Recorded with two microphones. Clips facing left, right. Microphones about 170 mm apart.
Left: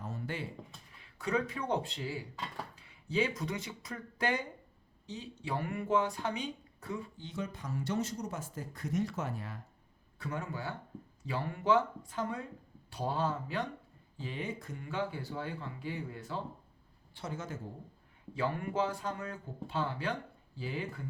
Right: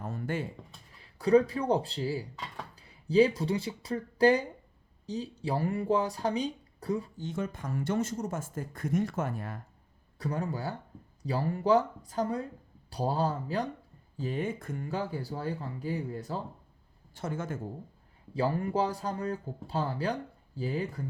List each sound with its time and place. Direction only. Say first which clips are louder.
0.0 s a sound: right 6 dB; 55° right (ahead or behind)
1.0 s speech: right 11 dB; 35° right (ahead or behind); by 9.6 s 50° right (ahead or behind)
10.2 s speech: right 6 dB; 35° right (ahead or behind)
17.2 s speech: right 6 dB; 50° right (ahead or behind)
18.3 s speech: right 4 dB; 35° right (ahead or behind)